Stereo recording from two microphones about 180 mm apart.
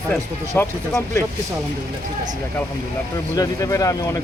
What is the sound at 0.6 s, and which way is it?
Speech, 15° left (ahead or behind).